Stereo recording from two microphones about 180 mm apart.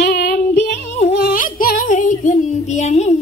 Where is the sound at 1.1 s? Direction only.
55° left (ahead or behind).